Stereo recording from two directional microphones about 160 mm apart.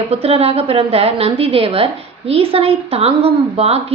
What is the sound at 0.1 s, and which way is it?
A woman's voice, 40° right (ahead or behind).